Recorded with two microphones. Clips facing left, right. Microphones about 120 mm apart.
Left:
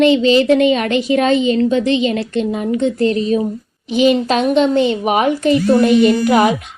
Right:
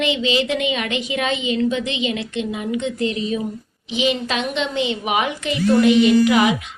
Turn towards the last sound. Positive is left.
turn(degrees=45)  # may be behind; listen again after turning